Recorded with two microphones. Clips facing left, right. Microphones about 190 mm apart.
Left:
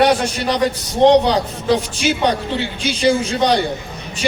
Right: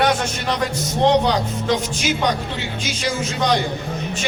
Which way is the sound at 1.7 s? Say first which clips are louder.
Left 5 dB; 30° left (ahead or behind).